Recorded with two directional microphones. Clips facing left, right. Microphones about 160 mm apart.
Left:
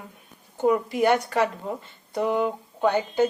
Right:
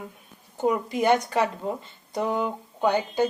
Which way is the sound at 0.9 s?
20° right (ahead or behind).